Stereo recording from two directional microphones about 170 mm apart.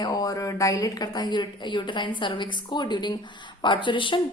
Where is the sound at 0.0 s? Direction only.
20° left (ahead or behind).